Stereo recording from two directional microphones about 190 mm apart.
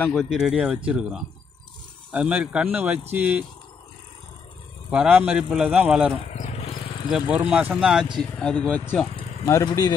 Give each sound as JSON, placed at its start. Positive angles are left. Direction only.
{"t": 0.0, "sound": "speech", "side_deg": 0}
{"t": 4.9, "sound": "speech", "side_deg": -5}
{"t": 6.2, "sound": "vehicle", "side_deg": 35}
{"t": 7.1, "sound": "speech", "side_deg": 0}
{"t": 9.5, "sound": "speech", "side_deg": 20}